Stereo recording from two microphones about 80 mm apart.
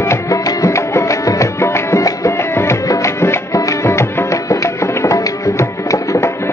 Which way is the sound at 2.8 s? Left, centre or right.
Left.